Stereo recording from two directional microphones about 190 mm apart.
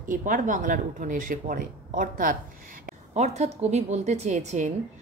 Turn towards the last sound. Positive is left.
turn(degrees=-35)  # may be behind; listen again after turning